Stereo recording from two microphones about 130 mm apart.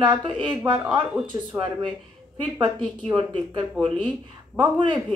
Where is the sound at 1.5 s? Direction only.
15° right (ahead or behind).